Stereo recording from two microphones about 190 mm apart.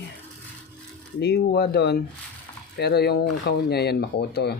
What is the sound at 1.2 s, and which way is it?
Speech, 55° left (ahead or behind).